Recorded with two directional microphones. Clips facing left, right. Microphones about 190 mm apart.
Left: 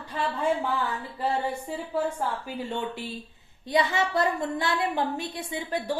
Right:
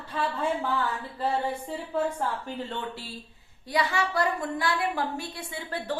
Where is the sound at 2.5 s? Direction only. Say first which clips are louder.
Left 2 dB; 10° left (ahead or behind).